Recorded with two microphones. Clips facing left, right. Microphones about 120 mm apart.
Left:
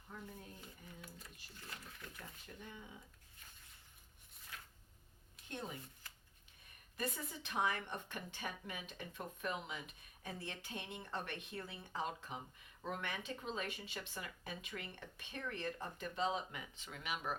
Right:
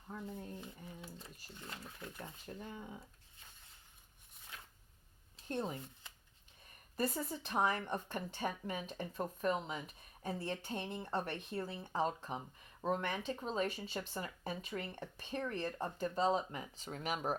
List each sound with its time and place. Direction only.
0.3 s a sound: 25° right (ahead or behind)
1.5 s speech: 25° right (ahead or behind); by 2.9 s 40° right (ahead or behind)
5.5 s speech: 35° right (ahead or behind)
6.9 s speech: 35° right (ahead or behind)